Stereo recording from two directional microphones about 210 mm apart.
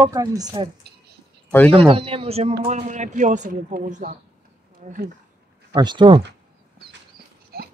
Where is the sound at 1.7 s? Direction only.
25° right (ahead or behind).